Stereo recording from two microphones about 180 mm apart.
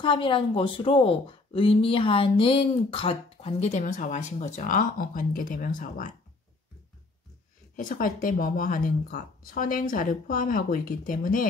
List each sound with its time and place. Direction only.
0.0 s a woman's voice: 30° left (ahead or behind); by 6.1 s 50° left (ahead or behind)
7.7 s speech: 50° left (ahead or behind)